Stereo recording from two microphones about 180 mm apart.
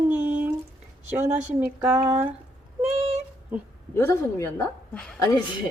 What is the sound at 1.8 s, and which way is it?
Speech, 5° right (ahead or behind).